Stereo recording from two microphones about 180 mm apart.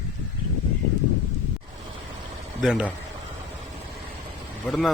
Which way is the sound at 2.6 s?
Centre (ahead or behind).